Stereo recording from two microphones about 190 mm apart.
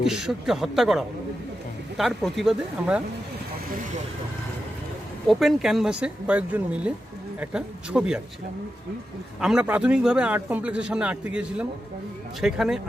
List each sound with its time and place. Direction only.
0.0 s a man's voice: 5° right (ahead or behind)
5.3 s a man's voice: centre (ahead or behind)
9.4 s a man's voice: 5° right (ahead or behind)